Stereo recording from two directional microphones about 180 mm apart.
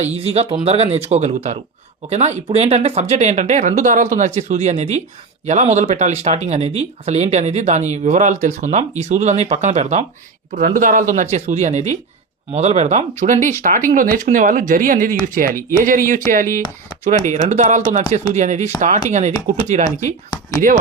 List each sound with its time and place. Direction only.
0.0 s speech: 35° right (ahead or behind)
10.5 s speech: 50° right (ahead or behind)